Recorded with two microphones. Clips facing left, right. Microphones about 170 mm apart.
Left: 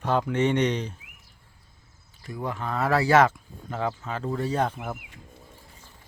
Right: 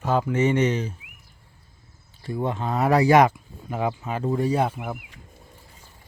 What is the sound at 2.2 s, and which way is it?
Speech, 25° right (ahead or behind).